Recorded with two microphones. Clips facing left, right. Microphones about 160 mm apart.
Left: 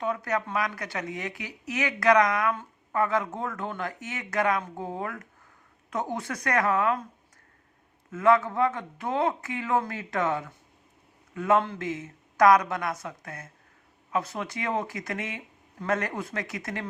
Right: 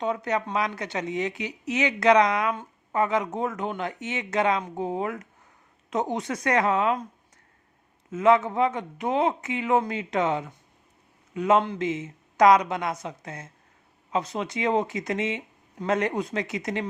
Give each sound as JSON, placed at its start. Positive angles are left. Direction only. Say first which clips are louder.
{"t": 0.0, "sound": "speech", "louder": "right 2 dB", "side_deg": -20}
{"t": 8.1, "sound": "speech", "louder": "right 2 dB", "side_deg": -20}